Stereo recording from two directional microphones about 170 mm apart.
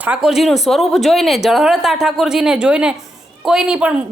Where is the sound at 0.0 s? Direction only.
5° right (ahead or behind).